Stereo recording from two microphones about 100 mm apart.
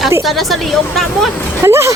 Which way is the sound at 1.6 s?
30° right (ahead or behind).